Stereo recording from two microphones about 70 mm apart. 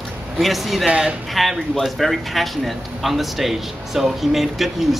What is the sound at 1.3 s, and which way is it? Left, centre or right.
Speech, centre.